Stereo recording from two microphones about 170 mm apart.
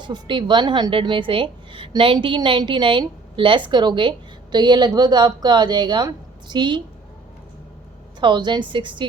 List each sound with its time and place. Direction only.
0.0 s a woman's voice: 25° right (ahead or behind)
8.2 s a woman's voice: 25° right (ahead or behind)